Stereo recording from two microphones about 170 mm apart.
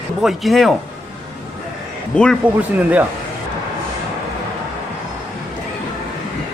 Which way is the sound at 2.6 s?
10° right (ahead or behind).